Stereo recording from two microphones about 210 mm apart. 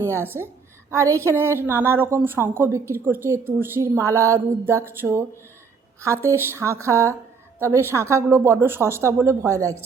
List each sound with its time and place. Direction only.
0.0 s a woman's voice: 10° right (ahead or behind)